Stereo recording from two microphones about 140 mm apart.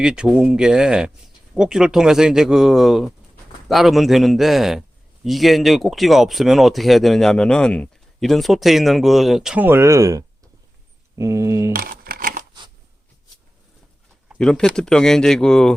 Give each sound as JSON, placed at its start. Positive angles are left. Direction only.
{"t": 0.0, "sound": "speech", "side_deg": -5}
{"t": 9.6, "sound": "speech", "side_deg": -20}
{"t": 11.7, "sound": "a sound", "side_deg": -90}
{"t": 14.3, "sound": "speech", "side_deg": 5}